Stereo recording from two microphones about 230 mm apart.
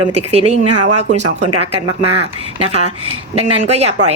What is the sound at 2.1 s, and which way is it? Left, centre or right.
Speech, right.